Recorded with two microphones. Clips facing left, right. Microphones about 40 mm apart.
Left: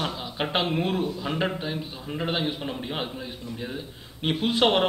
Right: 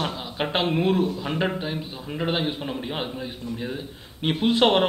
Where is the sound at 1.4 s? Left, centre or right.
Centre.